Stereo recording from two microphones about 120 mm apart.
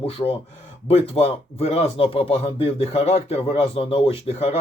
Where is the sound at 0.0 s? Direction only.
50° left (ahead or behind).